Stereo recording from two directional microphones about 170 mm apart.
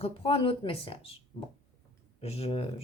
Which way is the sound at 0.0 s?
35° left (ahead or behind).